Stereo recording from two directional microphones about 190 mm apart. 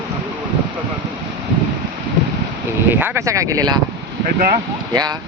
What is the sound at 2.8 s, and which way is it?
Speech, 10° right (ahead or behind).